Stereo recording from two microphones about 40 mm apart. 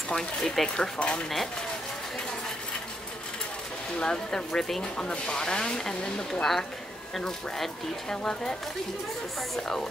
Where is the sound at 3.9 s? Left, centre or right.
Centre.